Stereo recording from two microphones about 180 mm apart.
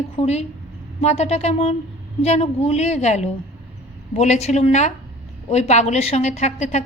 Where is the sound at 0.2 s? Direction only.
35° left (ahead or behind).